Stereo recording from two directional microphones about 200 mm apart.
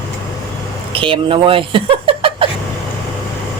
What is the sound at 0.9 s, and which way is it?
Speech, 25° right (ahead or behind).